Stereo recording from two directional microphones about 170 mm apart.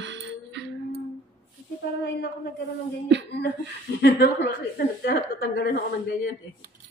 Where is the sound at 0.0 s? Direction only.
90° right.